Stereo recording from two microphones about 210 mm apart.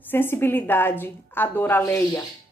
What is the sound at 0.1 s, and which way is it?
A woman's voice, 10° left (ahead or behind).